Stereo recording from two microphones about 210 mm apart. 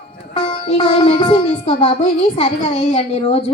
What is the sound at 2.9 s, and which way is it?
Speech, 30° left (ahead or behind).